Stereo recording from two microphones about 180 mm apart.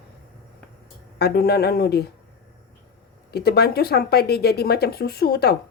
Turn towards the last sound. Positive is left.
turn(degrees=60)  # may be behind; listen again after turning